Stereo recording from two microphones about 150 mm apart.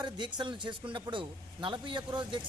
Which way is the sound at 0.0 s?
30° right (ahead or behind).